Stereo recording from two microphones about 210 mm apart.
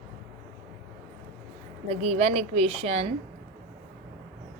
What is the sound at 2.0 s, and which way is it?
A woman's voice, 30° right (ahead or behind).